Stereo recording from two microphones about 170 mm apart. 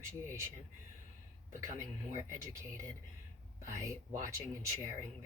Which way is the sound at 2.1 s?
15° right (ahead or behind).